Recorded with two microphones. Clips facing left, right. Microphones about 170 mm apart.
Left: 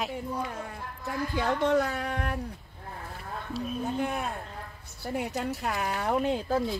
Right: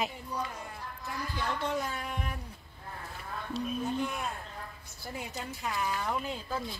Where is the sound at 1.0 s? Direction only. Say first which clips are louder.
Left 7 dB; 60° left (ahead or behind).